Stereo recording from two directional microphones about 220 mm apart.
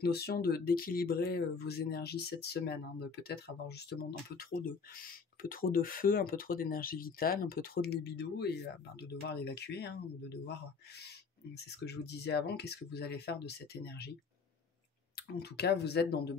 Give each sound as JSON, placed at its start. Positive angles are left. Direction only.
{"t": 0.0, "sound": "speech", "side_deg": 45}
{"t": 5.4, "sound": "speech", "side_deg": 40}
{"t": 15.1, "sound": "speech", "side_deg": 50}